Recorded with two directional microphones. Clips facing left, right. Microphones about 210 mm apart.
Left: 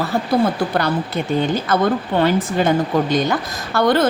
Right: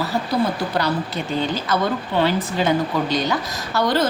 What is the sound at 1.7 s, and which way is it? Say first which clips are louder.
A woman's voice: left 4 dB; 55° left (ahead or behind).